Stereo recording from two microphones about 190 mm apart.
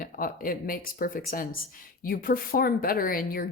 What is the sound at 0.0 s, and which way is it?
Speech, 50° left (ahead or behind).